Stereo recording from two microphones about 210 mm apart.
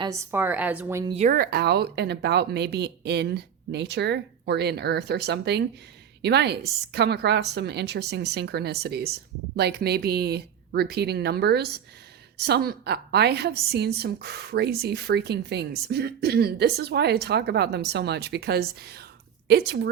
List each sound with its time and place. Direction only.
0.0 s a woman's voice: 15° right (ahead or behind)
1.1 s a woman's voice: 35° right (ahead or behind); by 19.9 s 55° right (ahead or behind)